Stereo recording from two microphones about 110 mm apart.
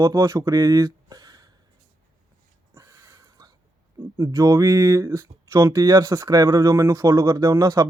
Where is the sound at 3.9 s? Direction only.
35° right (ahead or behind).